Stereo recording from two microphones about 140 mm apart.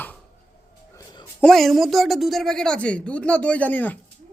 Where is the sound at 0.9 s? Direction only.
25° left (ahead or behind).